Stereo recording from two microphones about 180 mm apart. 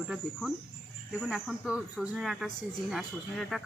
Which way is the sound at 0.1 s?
5° right (ahead or behind).